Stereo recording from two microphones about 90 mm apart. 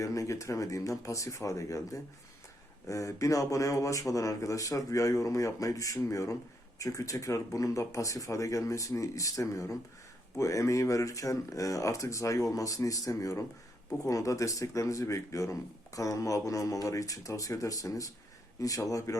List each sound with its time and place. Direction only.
0.0 s speech: 35° left (ahead or behind)